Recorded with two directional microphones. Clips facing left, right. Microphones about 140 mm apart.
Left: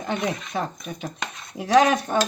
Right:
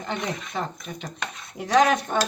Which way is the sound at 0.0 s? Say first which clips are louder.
Left 3 dB; 5° left (ahead or behind).